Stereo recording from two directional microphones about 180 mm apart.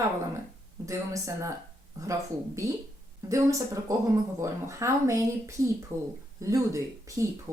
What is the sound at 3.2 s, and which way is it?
A woman's voice, 15° right (ahead or behind).